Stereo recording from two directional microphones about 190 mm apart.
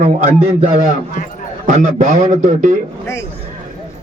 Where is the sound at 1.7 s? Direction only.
40° right (ahead or behind).